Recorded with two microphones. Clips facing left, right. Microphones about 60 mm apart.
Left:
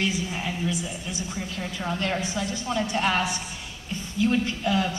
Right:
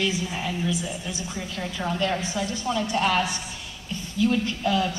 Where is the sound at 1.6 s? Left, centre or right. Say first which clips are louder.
Right 3 dB; right.